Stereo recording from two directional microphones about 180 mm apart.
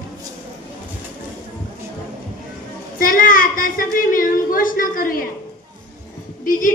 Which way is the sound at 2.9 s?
50° left (ahead or behind).